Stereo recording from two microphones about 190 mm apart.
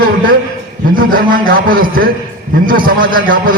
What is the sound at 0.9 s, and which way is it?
A man's voice, 50° right (ahead or behind).